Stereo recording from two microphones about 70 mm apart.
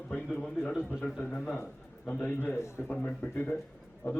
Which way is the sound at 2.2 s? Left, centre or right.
Left.